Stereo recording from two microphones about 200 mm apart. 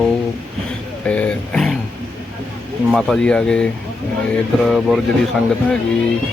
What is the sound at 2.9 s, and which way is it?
Speech, centre (ahead or behind).